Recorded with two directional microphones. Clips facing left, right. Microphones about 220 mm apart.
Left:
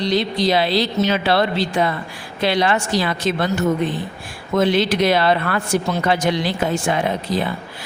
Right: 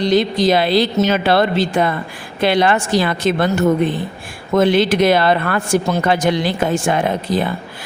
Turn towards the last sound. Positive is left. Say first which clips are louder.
# right 3 dB
turn(degrees=-50)  # may be behind; listen again after turning